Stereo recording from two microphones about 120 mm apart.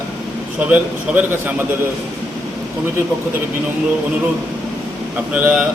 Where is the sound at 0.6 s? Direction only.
10° right (ahead or behind).